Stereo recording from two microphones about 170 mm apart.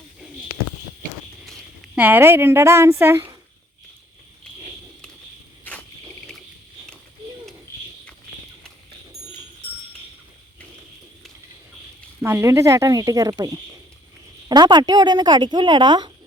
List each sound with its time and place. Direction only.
2.0 s speech: 10° right (ahead or behind)
12.2 s a woman's voice: 15° right (ahead or behind)